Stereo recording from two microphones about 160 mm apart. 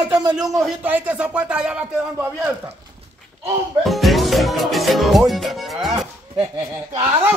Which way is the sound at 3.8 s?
Centre (ahead or behind).